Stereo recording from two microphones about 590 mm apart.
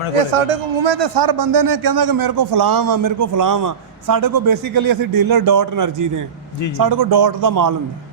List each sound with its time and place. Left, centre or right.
0.1 s speech: right
0.9 s a man's voice: right